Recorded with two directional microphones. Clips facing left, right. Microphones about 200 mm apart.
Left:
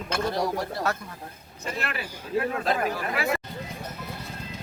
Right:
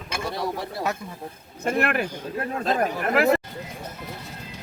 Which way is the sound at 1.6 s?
55° right (ahead or behind).